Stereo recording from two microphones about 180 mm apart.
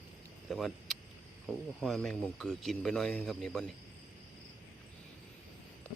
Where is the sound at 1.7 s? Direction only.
5° left (ahead or behind).